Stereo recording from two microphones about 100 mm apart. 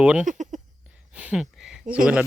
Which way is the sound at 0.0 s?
10° right (ahead or behind).